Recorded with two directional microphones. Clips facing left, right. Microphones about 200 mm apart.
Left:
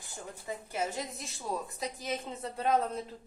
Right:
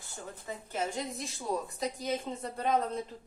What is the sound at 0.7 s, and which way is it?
A woman's voice, centre (ahead or behind).